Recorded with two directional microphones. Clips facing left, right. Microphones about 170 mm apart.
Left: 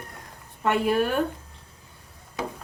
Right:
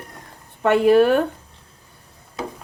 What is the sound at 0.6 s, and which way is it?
Speech, 70° right (ahead or behind).